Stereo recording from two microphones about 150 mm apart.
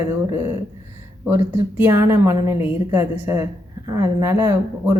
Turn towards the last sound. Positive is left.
turn(degrees=-15)  # may be behind; listen again after turning